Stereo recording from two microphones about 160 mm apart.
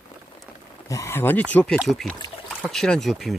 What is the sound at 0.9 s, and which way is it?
Speech, 15° left (ahead or behind).